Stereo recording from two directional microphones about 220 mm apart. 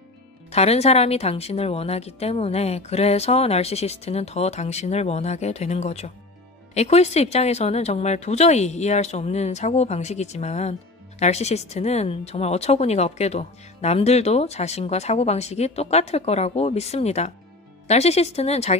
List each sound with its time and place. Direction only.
0.5 s speech: 30° left (ahead or behind)